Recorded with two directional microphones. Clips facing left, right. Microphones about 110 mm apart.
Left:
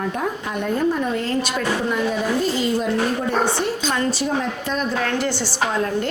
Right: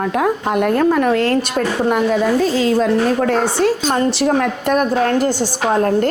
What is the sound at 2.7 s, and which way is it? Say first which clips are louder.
A woman's voice: right 6 dB; 90° right.